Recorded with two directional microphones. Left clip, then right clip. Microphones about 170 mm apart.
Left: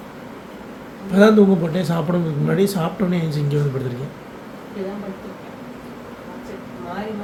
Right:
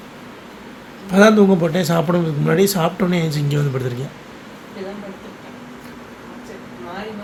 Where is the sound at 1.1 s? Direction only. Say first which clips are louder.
Right 2 dB; 25° right (ahead or behind).